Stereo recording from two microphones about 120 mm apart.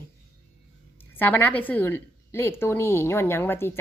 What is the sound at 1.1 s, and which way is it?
A woman's voice, 15° left (ahead or behind).